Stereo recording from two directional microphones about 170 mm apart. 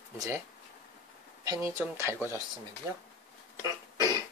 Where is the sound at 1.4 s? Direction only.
15° right (ahead or behind).